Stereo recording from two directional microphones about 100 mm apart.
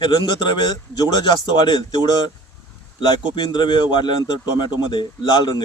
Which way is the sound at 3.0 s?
50° left (ahead or behind).